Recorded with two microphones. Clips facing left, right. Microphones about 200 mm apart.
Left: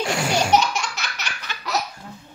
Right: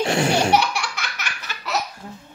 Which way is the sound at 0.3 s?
60° right (ahead or behind).